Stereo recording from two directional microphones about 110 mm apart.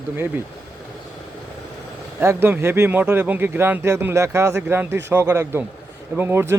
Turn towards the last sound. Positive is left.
turn(degrees=-25)  # may be behind; listen again after turning